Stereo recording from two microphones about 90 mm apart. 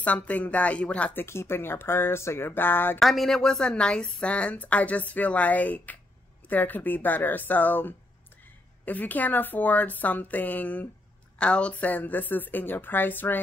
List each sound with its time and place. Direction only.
0.0 s a woman's voice: 15° left (ahead or behind)
1.2 s a woman's voice: 30° left (ahead or behind)
3.0 s a woman's voice: centre (ahead or behind); by 13.4 s 20° left (ahead or behind)